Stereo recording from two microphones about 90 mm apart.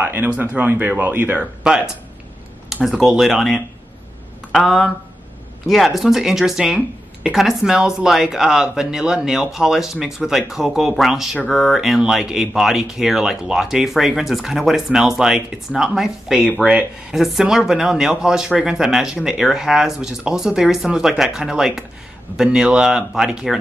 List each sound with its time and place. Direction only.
0.0 s speech: 20° right (ahead or behind); by 23.6 s 5° right (ahead or behind)